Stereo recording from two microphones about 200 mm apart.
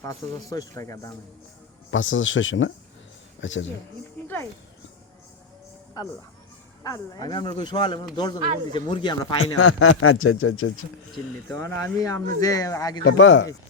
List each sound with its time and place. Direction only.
0.0 s speech: 15° left (ahead or behind)
1.9 s speech: 75° left (ahead or behind)
6.0 s speech: 20° left (ahead or behind)
9.4 s speech: 90° left
11.4 s speech: 15° left (ahead or behind)
13.1 s speech: 70° left (ahead or behind)